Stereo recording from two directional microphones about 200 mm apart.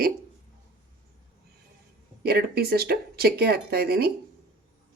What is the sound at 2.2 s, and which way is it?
Speech, 50° right (ahead or behind).